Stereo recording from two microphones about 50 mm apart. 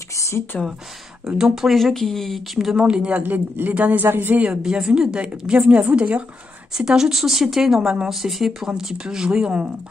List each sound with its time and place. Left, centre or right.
1.2 s speech: centre
1.8 s speech: centre
2.7 s speech: centre
3.2 s speech: right
4.5 s speech: centre
6.8 s speech: centre